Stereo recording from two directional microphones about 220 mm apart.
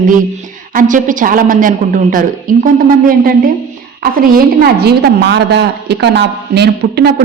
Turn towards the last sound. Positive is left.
turn(degrees=-50)  # may be behind; listen again after turning